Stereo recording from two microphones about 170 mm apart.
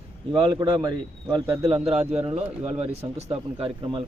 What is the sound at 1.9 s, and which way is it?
Speech, 40° right (ahead or behind).